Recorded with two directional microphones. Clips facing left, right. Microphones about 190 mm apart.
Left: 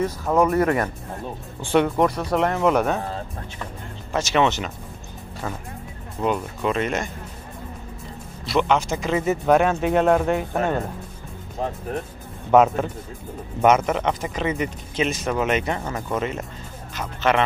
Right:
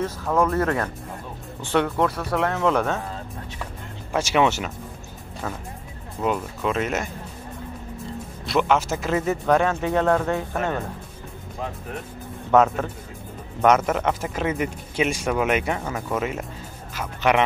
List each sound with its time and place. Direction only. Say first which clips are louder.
0.0 s speech: left 2 dB; 15° left (ahead or behind)
4.1 s speech: even; 10° right (ahead or behind)
8.5 s speech: even; 5° right (ahead or behind)
9.2 s speech: left 3 dB; 15° left (ahead or behind)
11.9 s speech: left 5 dB; 40° left (ahead or behind)
12.4 s speech: left 2 dB; 15° left (ahead or behind)
13.7 s speech: left 1 dB; centre (ahead or behind)